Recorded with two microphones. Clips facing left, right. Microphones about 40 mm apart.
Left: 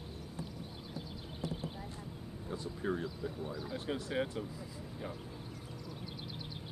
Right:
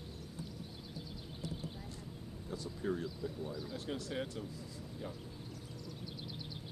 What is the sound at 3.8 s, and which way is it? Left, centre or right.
Speech, left.